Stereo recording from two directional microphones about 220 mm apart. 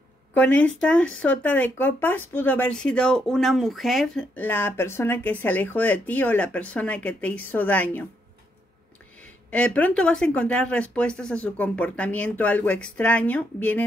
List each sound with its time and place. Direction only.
0.3 s speech: 5° left (ahead or behind)
9.5 s speech: 5° left (ahead or behind)